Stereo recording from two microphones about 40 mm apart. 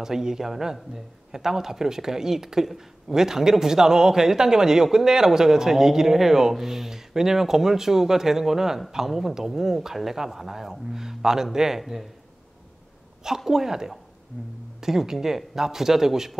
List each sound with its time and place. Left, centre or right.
0.0 s speech: centre
13.5 s speech: centre